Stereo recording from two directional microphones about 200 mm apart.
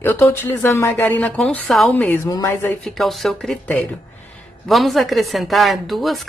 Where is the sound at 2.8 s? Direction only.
Centre (ahead or behind).